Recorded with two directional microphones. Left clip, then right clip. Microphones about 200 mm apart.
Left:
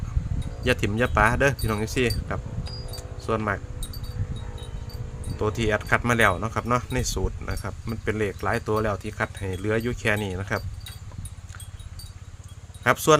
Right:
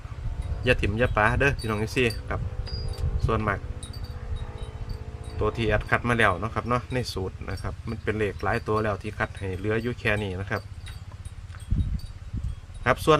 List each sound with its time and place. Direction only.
0.6 s speech: 15° left (ahead or behind)
5.4 s speech: 15° left (ahead or behind)
12.8 s speech: 15° left (ahead or behind)